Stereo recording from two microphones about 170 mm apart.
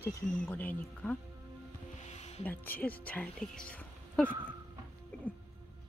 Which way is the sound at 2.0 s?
40° left (ahead or behind).